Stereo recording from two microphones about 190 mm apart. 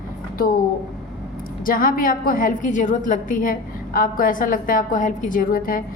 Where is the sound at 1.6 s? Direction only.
45° left (ahead or behind).